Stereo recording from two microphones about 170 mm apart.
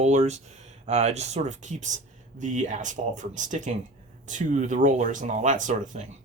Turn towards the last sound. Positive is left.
turn(degrees=-50)  # may be behind; listen again after turning